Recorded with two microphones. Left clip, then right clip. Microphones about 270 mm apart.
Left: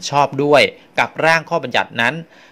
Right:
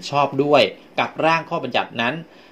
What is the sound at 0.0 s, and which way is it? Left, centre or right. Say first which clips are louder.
Speech: left 3 dB; left.